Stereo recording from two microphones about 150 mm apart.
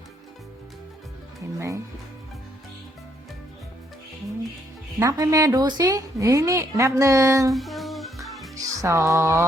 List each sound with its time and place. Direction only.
1.5 s a woman's voice: 20° right (ahead or behind)
4.9 s a woman's voice: 20° right (ahead or behind)
7.5 s music: centre (ahead or behind)
8.8 s a woman's voice: 20° right (ahead or behind)